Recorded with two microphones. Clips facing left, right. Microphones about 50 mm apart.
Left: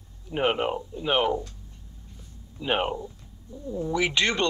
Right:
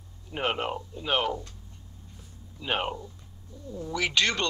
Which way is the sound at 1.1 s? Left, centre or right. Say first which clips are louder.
Left 3 dB; centre.